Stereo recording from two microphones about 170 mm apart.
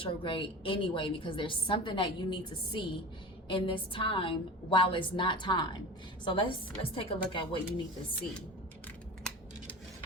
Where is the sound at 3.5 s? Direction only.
30° left (ahead or behind).